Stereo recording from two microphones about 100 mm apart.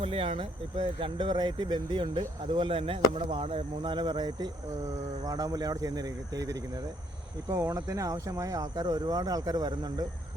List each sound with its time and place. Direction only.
0.0 s speech: 65° right (ahead or behind); by 4.4 s 50° right (ahead or behind)
5.2 s speech: 35° right (ahead or behind)
7.4 s speech: 30° right (ahead or behind)